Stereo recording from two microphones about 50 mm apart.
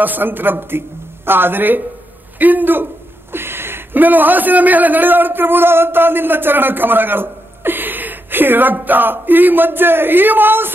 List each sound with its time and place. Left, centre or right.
0.0 s a man's voice: right